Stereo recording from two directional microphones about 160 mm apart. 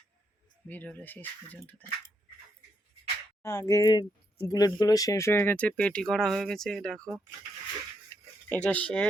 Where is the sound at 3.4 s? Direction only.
20° left (ahead or behind); by 7.1 s 5° left (ahead or behind).